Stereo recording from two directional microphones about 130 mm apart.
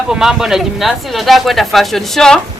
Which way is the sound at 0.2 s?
5° right (ahead or behind).